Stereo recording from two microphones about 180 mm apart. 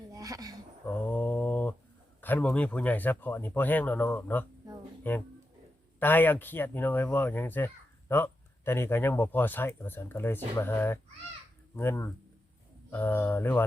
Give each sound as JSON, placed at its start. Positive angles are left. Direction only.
{"t": 0.1, "sound": "a sound", "side_deg": -20}
{"t": 0.9, "sound": "mantra", "side_deg": 10}
{"t": 2.2, "sound": "speech", "side_deg": 10}